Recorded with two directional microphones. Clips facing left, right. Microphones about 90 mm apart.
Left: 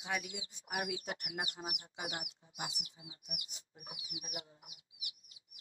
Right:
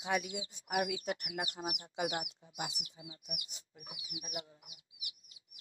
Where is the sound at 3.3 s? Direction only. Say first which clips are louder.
Right 2 dB; 30° left (ahead or behind).